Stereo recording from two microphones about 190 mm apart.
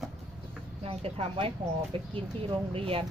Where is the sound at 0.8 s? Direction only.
30° right (ahead or behind).